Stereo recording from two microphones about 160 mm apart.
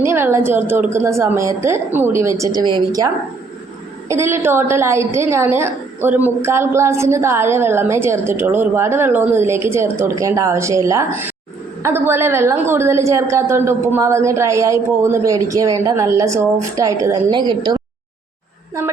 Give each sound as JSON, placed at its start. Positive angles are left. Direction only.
{"t": 0.0, "sound": "a woman's voice", "side_deg": -15}
{"t": 4.1, "sound": "a woman's voice", "side_deg": -15}